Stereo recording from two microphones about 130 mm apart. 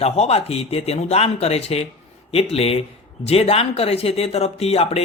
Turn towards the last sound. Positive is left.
turn(degrees=50)  # may be behind; listen again after turning